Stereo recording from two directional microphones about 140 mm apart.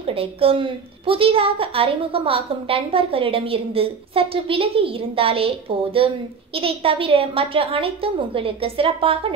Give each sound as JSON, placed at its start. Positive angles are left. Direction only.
{"t": 0.0, "sound": "a woman's voice", "side_deg": -45}